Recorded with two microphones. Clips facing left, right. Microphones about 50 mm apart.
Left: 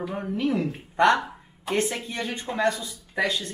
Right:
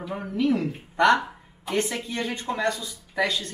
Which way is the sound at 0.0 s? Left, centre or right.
Centre.